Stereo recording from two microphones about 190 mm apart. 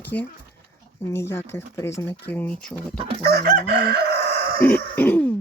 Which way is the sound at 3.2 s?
50° right (ahead or behind).